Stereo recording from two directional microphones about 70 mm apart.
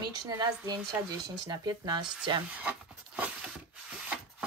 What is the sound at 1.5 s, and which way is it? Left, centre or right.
Speech, right.